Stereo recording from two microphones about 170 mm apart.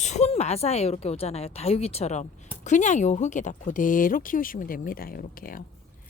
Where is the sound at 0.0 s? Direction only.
40° left (ahead or behind).